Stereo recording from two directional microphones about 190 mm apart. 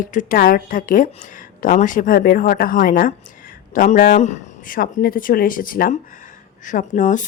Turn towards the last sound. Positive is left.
turn(degrees=40)  # may be behind; listen again after turning